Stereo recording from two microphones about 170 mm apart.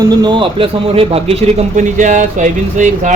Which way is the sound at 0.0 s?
25° right (ahead or behind).